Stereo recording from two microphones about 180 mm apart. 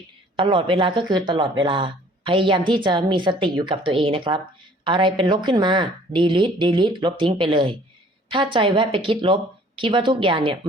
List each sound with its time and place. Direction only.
0.3 s a woman's voice: 30° right (ahead or behind)